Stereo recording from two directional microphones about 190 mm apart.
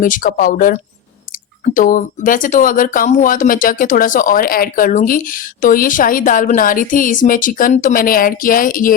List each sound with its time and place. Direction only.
0.0 s speech: 45° left (ahead or behind)